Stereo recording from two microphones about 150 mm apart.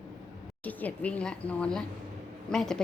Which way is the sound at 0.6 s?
10° left (ahead or behind).